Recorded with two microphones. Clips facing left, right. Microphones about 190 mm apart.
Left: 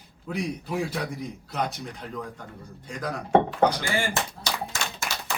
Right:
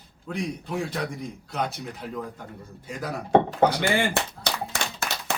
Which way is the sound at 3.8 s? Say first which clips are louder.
Right 4 dB; 65° right (ahead or behind).